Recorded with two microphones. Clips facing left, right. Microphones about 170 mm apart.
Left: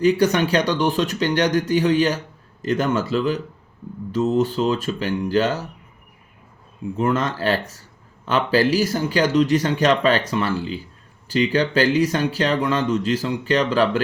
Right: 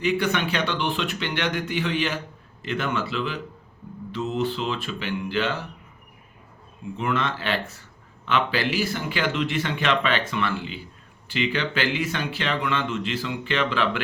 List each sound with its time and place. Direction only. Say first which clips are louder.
0.0 s speech: left 7 dB; 40° left (ahead or behind)
6.9 s speech: left 5 dB; 40° left (ahead or behind)